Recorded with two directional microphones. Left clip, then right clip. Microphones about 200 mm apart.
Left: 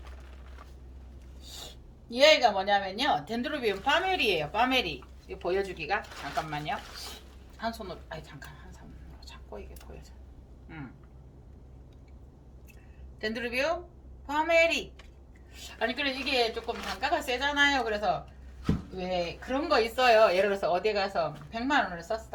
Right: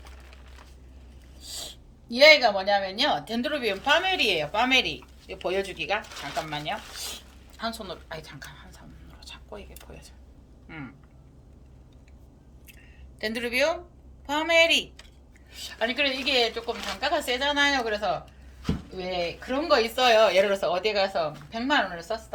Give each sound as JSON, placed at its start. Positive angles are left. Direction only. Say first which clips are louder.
{"t": 1.4, "sound": "a woman's voice", "louder": "right 6 dB", "side_deg": -40}
{"t": 7.6, "sound": "speech", "louder": "right 2 dB", "side_deg": -50}
{"t": 13.1, "sound": "speech", "louder": "right 5 dB", "side_deg": -55}